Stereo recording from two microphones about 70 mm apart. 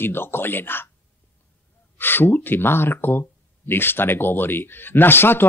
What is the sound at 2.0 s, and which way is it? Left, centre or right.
Speech, left.